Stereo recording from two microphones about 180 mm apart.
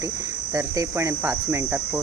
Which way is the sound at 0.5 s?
15° right (ahead or behind).